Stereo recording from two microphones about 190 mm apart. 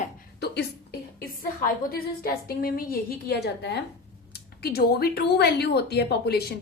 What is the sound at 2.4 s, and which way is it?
A woman's voice, 50° left (ahead or behind).